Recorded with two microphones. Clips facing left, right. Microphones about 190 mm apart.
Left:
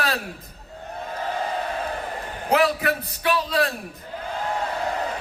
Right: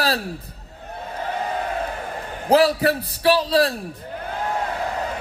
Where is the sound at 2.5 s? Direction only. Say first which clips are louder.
Right 4 dB; 35° right (ahead or behind).